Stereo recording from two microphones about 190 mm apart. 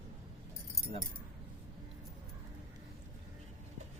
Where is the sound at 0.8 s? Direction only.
Centre (ahead or behind).